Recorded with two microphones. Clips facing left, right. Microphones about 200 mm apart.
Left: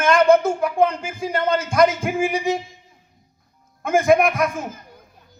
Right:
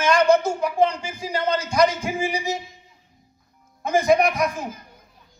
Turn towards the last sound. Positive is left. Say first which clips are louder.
# left 2 dB
turn(degrees=55)  # may be behind; listen again after turning